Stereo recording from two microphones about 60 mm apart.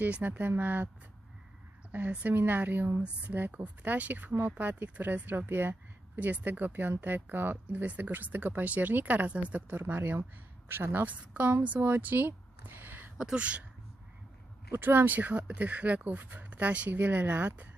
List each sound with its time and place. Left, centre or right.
0.0 s speech: right
1.9 s a woman's voice: right
10.7 s speech: right
13.1 s speech: centre
14.7 s speech: right